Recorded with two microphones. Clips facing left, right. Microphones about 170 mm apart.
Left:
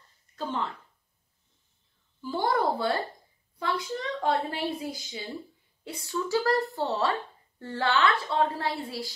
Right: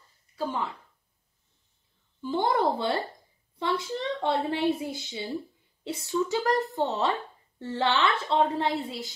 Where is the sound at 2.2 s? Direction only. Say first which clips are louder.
Right 1 dB; 20° right (ahead or behind).